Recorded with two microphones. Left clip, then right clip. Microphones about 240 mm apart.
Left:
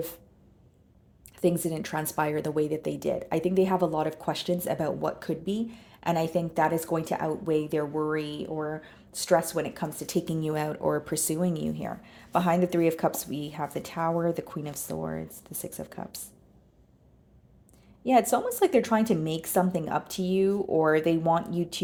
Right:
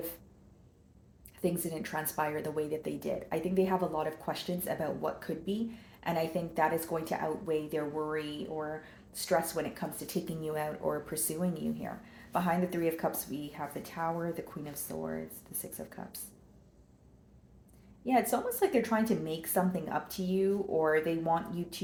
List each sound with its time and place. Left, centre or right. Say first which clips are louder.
1.4 s speech: left 7 dB; left
18.0 s speech: left 6 dB; left